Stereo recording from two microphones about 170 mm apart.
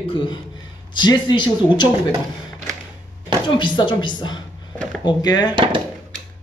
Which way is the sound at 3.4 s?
30° left (ahead or behind).